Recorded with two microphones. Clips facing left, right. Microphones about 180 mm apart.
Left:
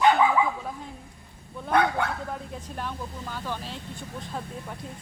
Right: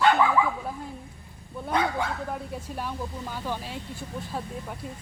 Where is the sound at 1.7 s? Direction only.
60° left (ahead or behind).